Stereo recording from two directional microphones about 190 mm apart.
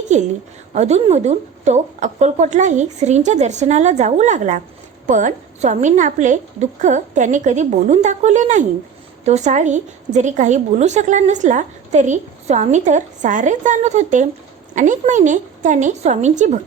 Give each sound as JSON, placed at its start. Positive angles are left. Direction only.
{"t": 0.1, "sound": "a woman's voice", "side_deg": -40}